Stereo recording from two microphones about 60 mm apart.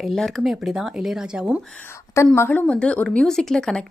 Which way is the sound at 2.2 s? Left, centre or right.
Left.